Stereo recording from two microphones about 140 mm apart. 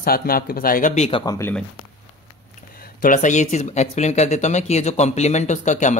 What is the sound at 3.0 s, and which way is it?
Speech, 65° left (ahead or behind).